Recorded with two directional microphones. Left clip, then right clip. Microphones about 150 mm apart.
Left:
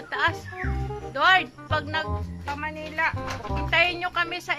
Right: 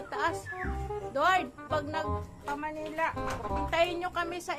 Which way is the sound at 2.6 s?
20° left (ahead or behind).